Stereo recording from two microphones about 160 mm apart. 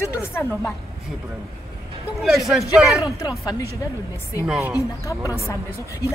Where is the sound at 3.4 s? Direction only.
20° left (ahead or behind).